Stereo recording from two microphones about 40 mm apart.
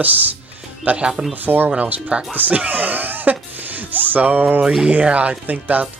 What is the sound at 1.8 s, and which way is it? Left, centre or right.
Speech, right.